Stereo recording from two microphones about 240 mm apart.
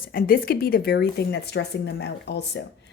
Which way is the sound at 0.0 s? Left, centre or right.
Left.